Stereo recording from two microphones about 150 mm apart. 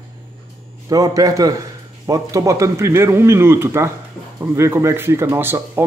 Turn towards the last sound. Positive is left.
turn(degrees=-15)  # may be behind; listen again after turning